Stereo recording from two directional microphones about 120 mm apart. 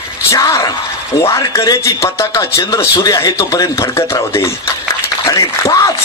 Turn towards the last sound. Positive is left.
turn(degrees=30)  # may be behind; listen again after turning